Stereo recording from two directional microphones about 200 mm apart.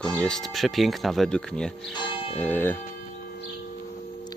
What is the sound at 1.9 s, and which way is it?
Church bell, 25° left (ahead or behind).